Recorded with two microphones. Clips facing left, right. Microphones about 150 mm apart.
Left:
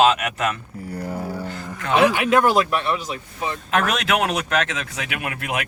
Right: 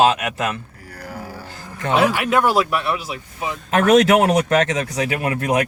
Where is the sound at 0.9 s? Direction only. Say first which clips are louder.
Left 6 dB; 25° left (ahead or behind).